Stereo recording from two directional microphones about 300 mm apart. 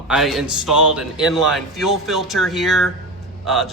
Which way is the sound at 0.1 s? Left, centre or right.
Centre.